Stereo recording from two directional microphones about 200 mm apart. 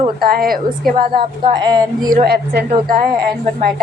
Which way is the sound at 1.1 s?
20° right (ahead or behind).